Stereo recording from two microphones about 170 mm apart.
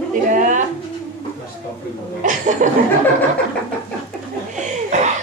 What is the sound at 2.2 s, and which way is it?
Chuckle, 45° right (ahead or behind).